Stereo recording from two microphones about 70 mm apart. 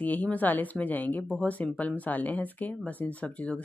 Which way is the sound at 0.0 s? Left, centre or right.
Left.